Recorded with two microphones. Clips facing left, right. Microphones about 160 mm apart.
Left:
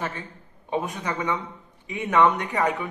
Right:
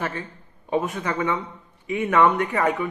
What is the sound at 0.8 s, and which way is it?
A man's voice, 15° left (ahead or behind).